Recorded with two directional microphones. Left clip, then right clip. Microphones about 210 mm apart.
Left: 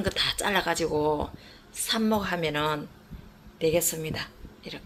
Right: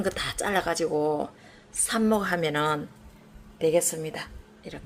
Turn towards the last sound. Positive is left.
turn(degrees=-10)  # may be behind; listen again after turning